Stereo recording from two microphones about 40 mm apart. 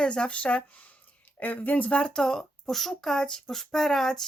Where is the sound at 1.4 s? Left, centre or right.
Left.